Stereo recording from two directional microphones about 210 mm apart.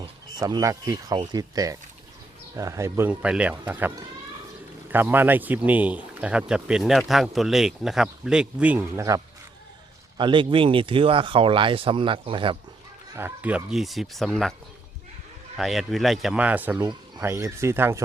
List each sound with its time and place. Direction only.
0.0 s speech: 20° right (ahead or behind)
13.1 s speech: 10° right (ahead or behind)
15.5 s speech: centre (ahead or behind)